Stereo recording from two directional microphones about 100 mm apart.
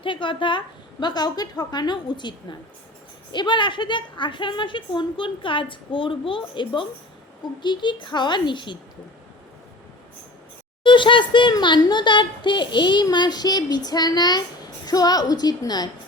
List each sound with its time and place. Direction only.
0.0 s speech: 55° left (ahead or behind)
10.8 s a woman's voice: 55° left (ahead or behind)